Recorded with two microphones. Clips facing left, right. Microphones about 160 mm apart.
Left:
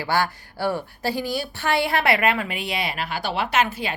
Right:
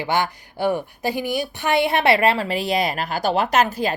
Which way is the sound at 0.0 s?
20° right (ahead or behind).